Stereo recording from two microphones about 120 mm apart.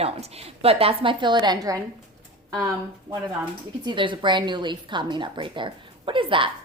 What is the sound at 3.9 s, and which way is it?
A woman's voice, 40° right (ahead or behind).